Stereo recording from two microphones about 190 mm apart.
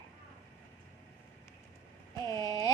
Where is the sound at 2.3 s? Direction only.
20° left (ahead or behind).